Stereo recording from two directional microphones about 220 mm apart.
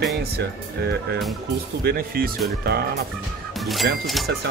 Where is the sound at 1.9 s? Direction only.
45° right (ahead or behind).